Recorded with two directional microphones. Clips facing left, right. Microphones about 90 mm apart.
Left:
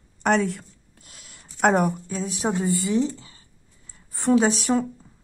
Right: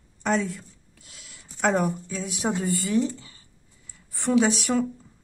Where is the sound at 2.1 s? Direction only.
35° left (ahead or behind).